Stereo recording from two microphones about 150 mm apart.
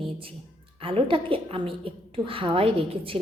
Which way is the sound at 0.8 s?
35° right (ahead or behind).